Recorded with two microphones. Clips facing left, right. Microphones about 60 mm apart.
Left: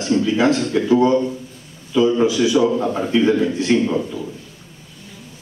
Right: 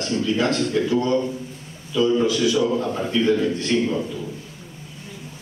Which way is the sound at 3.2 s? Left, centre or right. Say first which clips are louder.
Left 3 dB; centre.